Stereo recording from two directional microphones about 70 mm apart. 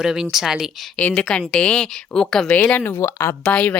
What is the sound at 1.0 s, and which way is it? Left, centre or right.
A woman's voice, centre.